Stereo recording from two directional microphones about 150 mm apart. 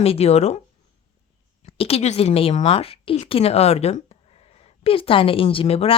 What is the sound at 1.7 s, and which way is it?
Speech, 40° left (ahead or behind).